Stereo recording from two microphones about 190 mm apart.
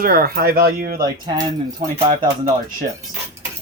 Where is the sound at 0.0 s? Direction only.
50° right (ahead or behind).